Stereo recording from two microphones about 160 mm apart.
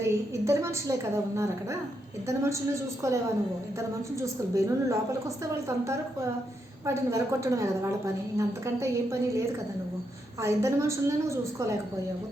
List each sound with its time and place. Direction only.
0.0 s a woman's voice: 20° right (ahead or behind)
6.8 s a woman's voice: 20° right (ahead or behind)
10.4 s a woman's voice: 20° right (ahead or behind)